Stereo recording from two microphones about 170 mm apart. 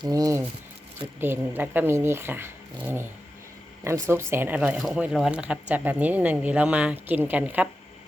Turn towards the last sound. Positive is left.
turn(degrees=-10)  # may be behind; listen again after turning